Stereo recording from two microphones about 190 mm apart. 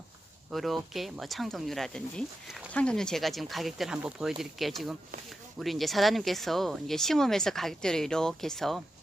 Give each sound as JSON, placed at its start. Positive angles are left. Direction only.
{"t": 0.5, "sound": "speech", "side_deg": 0}